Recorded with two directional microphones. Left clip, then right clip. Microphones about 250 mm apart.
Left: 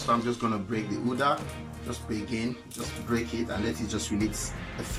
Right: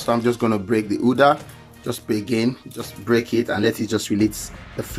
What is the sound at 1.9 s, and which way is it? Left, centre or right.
Speech, right.